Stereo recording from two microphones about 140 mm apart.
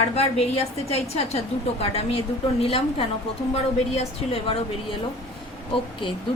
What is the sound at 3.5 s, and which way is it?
A woman's voice, 50° left (ahead or behind).